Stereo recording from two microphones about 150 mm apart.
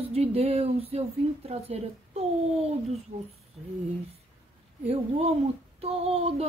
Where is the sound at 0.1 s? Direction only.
45° right (ahead or behind).